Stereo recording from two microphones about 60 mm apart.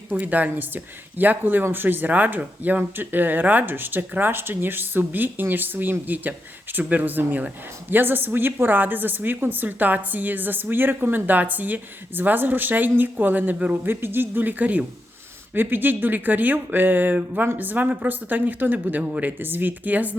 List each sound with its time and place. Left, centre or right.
0.1 s speech: right
13.8 s speech: right
19.0 s speech: centre
19.4 s speech: right